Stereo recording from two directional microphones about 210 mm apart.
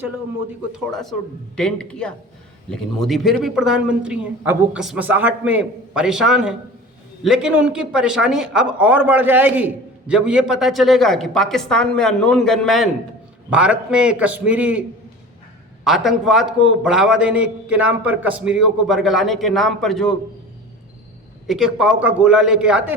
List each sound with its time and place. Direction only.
0.7 s speech: centre (ahead or behind)
21.4 s speech: centre (ahead or behind)